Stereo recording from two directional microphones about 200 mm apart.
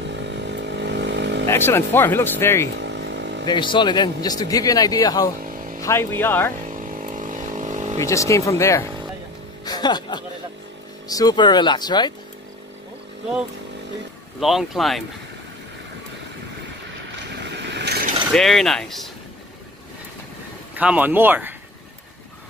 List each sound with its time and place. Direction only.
0.0 s chainsaw: 60° right (ahead or behind)
1.4 s speech: 10° left (ahead or behind)
2.8 s vehicle: 60° right (ahead or behind)
3.4 s a man's voice: 25° left (ahead or behind)
6.7 s vehicle: 40° right (ahead or behind)
8.0 s a man's voice: 15° left (ahead or behind)
14.4 s speech: centre (ahead or behind)
17.5 s vehicle: 60° right (ahead or behind)
18.3 s speech: centre (ahead or behind)
20.7 s speech: 10° right (ahead or behind)